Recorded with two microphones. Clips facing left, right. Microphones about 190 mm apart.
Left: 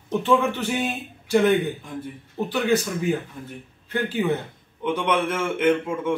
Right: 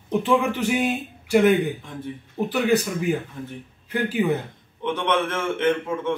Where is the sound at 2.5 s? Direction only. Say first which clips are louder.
Right 1 dB; 10° right (ahead or behind).